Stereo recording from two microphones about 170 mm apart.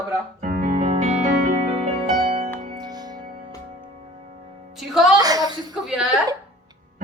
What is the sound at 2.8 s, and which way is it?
Music, 25° right (ahead or behind).